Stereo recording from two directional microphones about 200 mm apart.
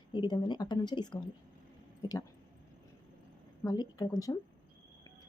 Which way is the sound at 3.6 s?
20° left (ahead or behind).